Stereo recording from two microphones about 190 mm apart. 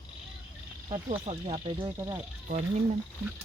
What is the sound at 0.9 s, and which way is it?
Speech, 30° right (ahead or behind).